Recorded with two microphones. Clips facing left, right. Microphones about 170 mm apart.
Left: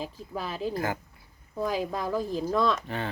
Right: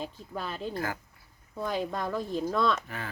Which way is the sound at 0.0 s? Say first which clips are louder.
Left 2 dB; 5° left (ahead or behind).